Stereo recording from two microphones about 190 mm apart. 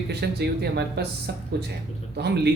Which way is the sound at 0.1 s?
60° right (ahead or behind).